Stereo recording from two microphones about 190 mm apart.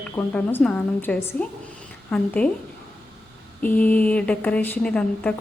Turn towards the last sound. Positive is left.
turn(degrees=5)  # may be behind; listen again after turning